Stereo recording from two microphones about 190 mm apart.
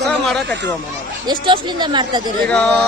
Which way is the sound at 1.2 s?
25° right (ahead or behind).